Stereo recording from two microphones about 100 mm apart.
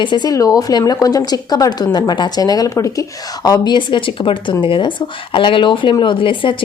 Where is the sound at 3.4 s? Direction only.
45° left (ahead or behind).